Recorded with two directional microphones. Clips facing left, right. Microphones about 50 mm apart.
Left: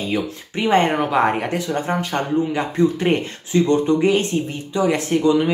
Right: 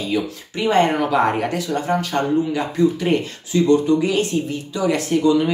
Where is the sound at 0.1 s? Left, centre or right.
Left.